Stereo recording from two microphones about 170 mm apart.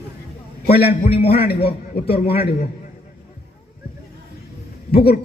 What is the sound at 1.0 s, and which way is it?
Speech, 35° left (ahead or behind).